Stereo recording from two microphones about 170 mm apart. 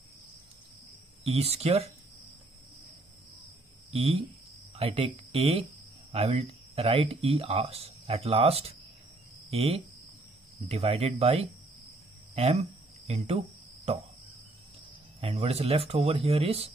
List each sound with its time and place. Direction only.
1.2 s speech: 35° right (ahead or behind)
3.9 s speech: 35° right (ahead or behind)
12.4 s cricket: 35° right (ahead or behind)
15.1 s speech: 35° right (ahead or behind)